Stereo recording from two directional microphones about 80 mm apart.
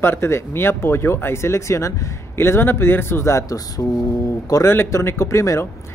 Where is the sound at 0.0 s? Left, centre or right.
Left.